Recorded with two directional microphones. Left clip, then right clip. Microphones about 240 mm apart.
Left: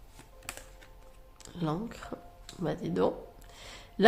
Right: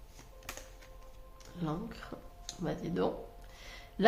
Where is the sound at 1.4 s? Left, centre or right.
Left.